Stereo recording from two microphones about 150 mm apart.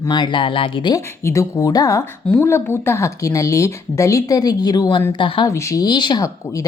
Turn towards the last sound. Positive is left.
turn(degrees=25)  # may be behind; listen again after turning